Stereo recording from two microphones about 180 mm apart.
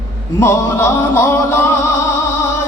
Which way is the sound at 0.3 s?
15° left (ahead or behind).